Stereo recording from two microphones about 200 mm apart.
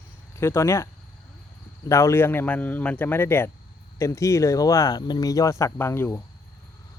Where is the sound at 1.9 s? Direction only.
15° left (ahead or behind).